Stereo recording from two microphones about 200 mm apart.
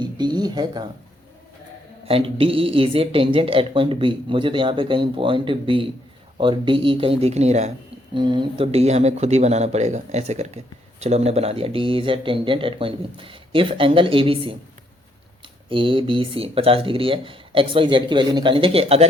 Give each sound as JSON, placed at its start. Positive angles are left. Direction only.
{"t": 0.0, "sound": "a sound", "side_deg": -20}
{"t": 2.0, "sound": "speech", "side_deg": -25}
{"t": 15.7, "sound": "speech", "side_deg": -25}